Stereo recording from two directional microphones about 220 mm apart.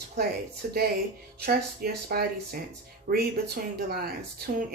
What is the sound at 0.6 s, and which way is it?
Speech, 40° right (ahead or behind).